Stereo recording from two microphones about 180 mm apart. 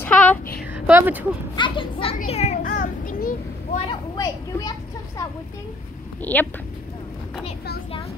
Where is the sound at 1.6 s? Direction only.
30° left (ahead or behind).